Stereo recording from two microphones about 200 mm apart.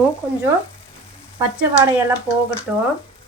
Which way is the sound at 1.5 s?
5° right (ahead or behind).